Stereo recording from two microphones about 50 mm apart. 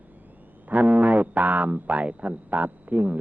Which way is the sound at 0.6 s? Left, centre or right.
Right.